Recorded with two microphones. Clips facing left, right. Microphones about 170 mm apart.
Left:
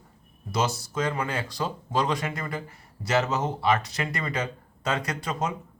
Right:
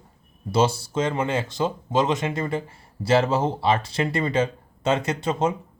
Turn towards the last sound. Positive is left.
turn(degrees=-25)  # may be behind; listen again after turning